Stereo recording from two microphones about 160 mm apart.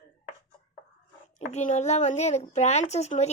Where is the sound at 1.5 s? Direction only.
45° left (ahead or behind).